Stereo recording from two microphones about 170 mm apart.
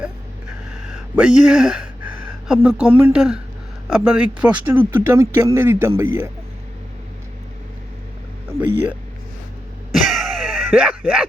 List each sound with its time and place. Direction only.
0.7 s a sound: 5° right (ahead or behind)
3.0 s speech: 5° right (ahead or behind)
9.9 s music: centre (ahead or behind)